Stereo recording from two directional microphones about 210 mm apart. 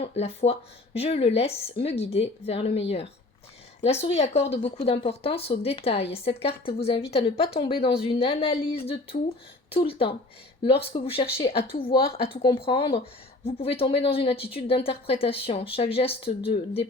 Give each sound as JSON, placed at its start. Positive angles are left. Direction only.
{"t": 0.0, "sound": "speech", "side_deg": 30}